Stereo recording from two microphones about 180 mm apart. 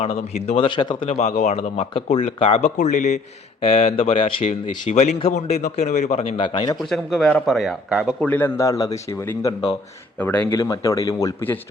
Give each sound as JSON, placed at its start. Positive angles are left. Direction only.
{"t": 0.0, "sound": "a man's voice", "side_deg": 35}
{"t": 1.0, "sound": "speech", "side_deg": 40}
{"t": 6.5, "sound": "a man's voice", "side_deg": 25}
{"t": 6.7, "sound": "speech", "side_deg": 0}
{"t": 8.3, "sound": "a man's voice", "side_deg": 10}
{"t": 10.2, "sound": "a man's voice", "side_deg": 10}